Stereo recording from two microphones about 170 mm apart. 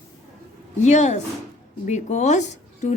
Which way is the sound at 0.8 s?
45° left (ahead or behind).